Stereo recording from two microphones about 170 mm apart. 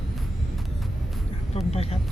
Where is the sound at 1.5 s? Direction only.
40° left (ahead or behind).